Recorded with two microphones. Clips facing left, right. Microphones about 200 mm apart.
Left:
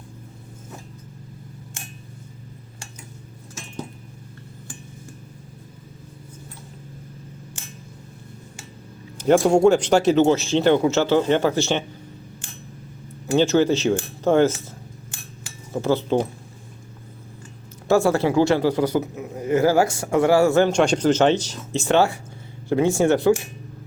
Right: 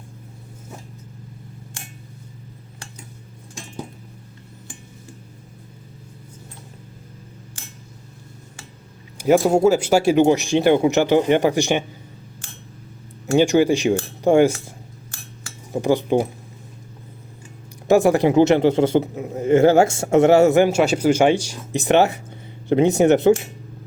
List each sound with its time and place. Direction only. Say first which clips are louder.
9.1 s speech: even; 5° right (ahead or behind)
13.3 s speech: right 2 dB; 15° right (ahead or behind)
15.7 s speech: right 2 dB; 15° right (ahead or behind)
17.8 s a man's voice: right 3 dB; 15° right (ahead or behind)